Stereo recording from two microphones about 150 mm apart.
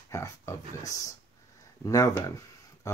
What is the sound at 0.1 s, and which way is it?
Speech, 20° left (ahead or behind).